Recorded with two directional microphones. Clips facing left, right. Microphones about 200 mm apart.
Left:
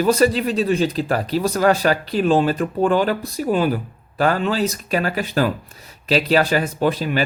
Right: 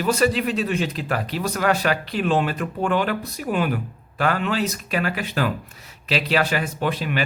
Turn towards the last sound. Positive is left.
turn(degrees=40)  # may be behind; listen again after turning